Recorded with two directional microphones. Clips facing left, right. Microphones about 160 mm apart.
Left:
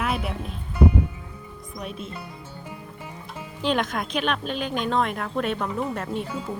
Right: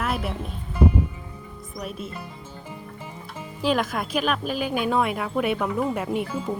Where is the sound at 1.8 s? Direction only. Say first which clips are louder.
Right 1 dB; centre (ahead or behind).